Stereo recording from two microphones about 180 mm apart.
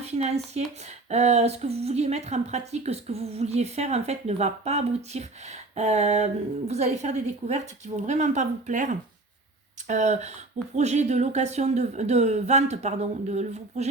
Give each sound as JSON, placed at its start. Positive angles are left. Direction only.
{"t": 0.0, "sound": "a woman's voice", "side_deg": -35}